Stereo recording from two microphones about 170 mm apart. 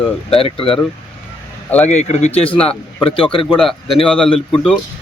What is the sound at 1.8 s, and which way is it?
Speech, 40° left (ahead or behind).